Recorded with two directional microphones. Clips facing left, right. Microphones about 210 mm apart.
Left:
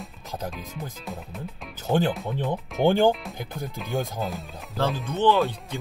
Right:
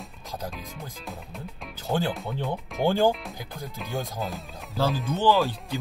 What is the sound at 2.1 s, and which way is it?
Speech, centre (ahead or behind).